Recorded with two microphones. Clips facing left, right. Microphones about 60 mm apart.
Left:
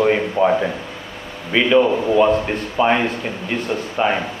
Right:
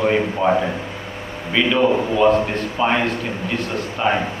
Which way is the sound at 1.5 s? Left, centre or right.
Centre.